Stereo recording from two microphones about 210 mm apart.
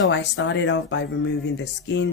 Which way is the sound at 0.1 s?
60° left (ahead or behind).